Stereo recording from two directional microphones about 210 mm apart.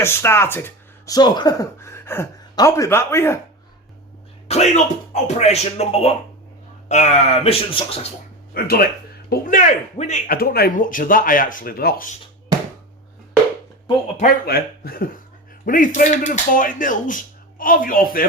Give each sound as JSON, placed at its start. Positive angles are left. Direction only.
{"t": 0.0, "sound": "speech", "side_deg": 10}
{"t": 4.4, "sound": "speech", "side_deg": 30}
{"t": 8.5, "sound": "speech", "side_deg": 45}
{"t": 14.2, "sound": "speech", "side_deg": 45}